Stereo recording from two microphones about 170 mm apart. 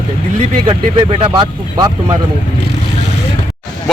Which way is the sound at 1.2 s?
25° right (ahead or behind).